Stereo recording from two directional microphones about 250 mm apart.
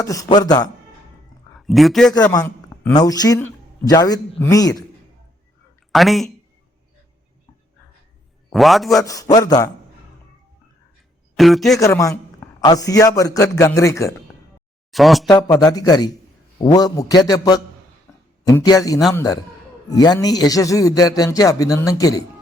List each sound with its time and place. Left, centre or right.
0.0 s a man's voice: centre
1.6 s a man's voice: centre
2.1 s speech: centre
5.9 s a man's voice: centre
8.5 s a man's voice: centre
9.0 s a man's voice: centre
11.3 s a man's voice: centre
11.8 s a man's voice: centre
14.9 s a man's voice: centre
15.3 s a man's voice: centre
18.1 s a sound: centre
18.4 s a man's voice: centre